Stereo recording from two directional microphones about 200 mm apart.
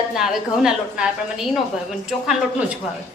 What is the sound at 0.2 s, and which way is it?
A woman's voice, centre (ahead or behind).